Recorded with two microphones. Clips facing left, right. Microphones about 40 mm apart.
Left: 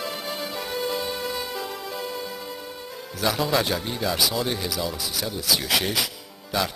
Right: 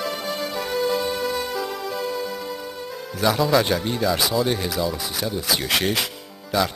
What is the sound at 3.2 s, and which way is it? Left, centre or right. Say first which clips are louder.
Speech: right 4 dB; centre.